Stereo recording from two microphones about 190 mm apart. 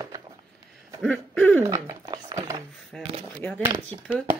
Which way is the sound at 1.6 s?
15° right (ahead or behind).